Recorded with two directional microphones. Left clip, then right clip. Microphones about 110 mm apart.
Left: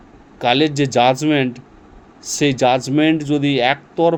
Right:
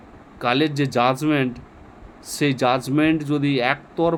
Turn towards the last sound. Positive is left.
turn(degrees=35)  # may be behind; listen again after turning